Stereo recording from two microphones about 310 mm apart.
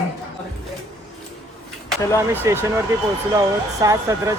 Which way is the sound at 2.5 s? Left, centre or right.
Centre.